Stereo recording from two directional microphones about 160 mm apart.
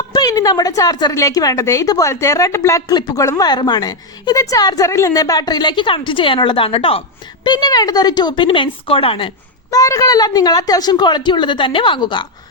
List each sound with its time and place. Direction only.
0.1 s a woman's voice: 25° left (ahead or behind)
7.4 s a woman's voice: 25° left (ahead or behind)
9.6 s a woman's voice: 20° left (ahead or behind)